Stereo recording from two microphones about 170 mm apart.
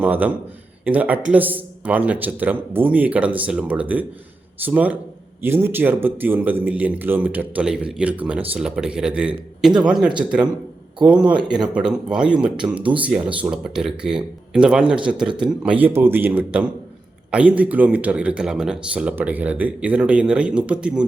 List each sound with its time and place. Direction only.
0.0 s speech: 10° right (ahead or behind)